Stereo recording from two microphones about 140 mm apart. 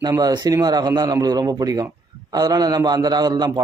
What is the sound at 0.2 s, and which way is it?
A man's voice, 25° right (ahead or behind).